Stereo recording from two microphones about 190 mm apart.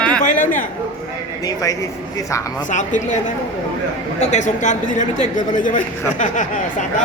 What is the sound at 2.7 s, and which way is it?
Speech, 40° left (ahead or behind).